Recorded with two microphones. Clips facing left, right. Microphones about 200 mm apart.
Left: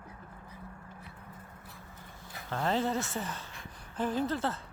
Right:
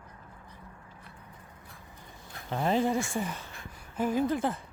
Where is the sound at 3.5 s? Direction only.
10° right (ahead or behind).